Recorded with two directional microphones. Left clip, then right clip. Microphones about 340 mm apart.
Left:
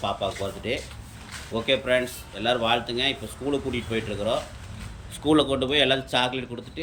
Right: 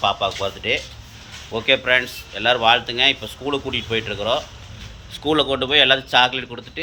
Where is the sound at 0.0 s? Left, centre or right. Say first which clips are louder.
Right 7 dB; centre.